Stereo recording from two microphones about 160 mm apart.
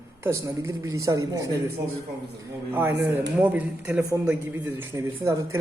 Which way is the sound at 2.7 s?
15° right (ahead or behind).